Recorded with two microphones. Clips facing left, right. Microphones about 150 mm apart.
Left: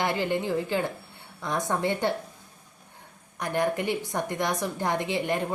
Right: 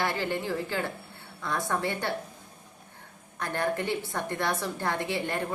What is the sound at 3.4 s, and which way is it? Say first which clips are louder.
A woman's voice: left 3 dB; 15° left (ahead or behind).